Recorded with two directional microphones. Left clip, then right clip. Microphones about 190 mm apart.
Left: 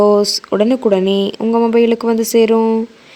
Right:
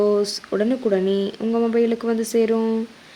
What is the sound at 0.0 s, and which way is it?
Speech, 40° left (ahead or behind).